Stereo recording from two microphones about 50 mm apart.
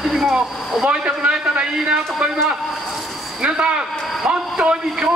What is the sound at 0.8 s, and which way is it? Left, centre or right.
A man's voice, centre.